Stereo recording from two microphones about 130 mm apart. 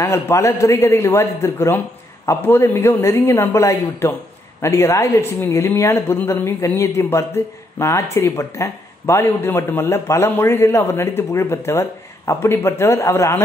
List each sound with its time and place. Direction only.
0.0 s speech: 20° left (ahead or behind)